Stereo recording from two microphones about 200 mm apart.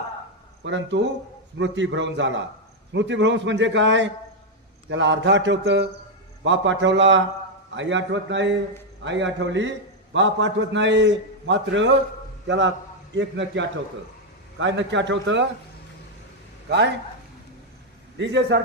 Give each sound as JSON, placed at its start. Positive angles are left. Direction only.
{"t": 0.6, "sound": "a man's voice", "side_deg": -65}
{"t": 16.6, "sound": "a man's voice", "side_deg": -60}
{"t": 18.2, "sound": "a man's voice", "side_deg": -65}